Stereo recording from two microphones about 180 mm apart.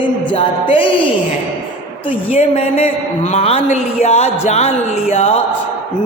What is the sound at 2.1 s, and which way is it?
Speech, 30° left (ahead or behind).